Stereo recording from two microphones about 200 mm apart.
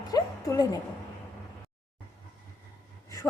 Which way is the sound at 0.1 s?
20° left (ahead or behind).